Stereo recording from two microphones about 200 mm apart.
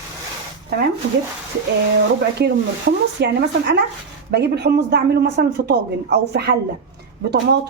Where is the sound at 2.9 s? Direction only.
50° right (ahead or behind).